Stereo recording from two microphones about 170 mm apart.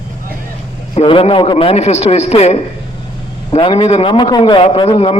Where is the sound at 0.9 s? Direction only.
35° left (ahead or behind).